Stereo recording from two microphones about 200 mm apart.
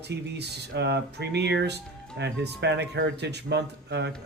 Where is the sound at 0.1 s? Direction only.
60° right (ahead or behind).